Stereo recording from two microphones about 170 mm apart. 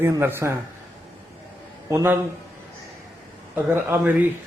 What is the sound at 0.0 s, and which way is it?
Speech, 10° right (ahead or behind).